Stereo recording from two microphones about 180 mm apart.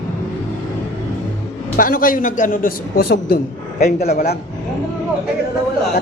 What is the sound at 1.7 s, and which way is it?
A man's voice, 50° left (ahead or behind).